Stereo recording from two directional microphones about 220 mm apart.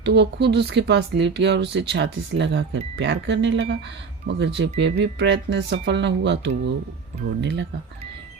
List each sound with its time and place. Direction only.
0.0 s speech: 50° right (ahead or behind)